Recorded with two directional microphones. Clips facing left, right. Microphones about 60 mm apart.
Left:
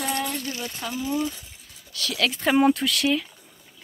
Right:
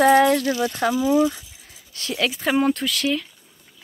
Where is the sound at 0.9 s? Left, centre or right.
Right.